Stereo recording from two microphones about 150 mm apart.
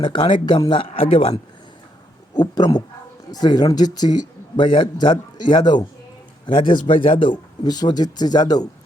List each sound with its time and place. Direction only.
0.0 s a man's voice: 35° left (ahead or behind)
2.3 s a man's voice: 30° left (ahead or behind)